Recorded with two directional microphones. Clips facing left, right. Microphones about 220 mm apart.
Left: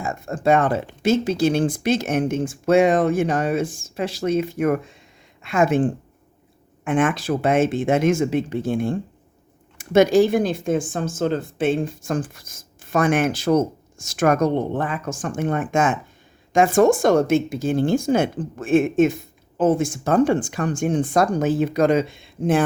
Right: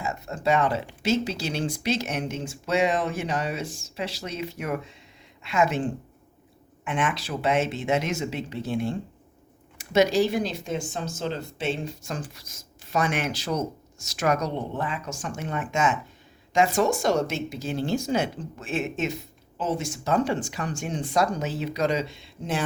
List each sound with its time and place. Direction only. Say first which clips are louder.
0.0 s speech: left 5 dB; 50° left (ahead or behind)